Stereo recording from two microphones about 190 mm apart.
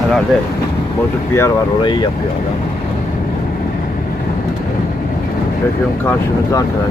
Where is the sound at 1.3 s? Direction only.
20° left (ahead or behind).